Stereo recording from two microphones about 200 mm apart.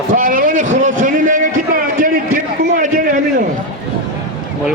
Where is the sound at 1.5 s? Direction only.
45° right (ahead or behind).